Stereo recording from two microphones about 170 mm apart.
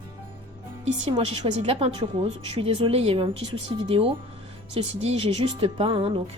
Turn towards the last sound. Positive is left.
turn(degrees=-35)  # may be behind; listen again after turning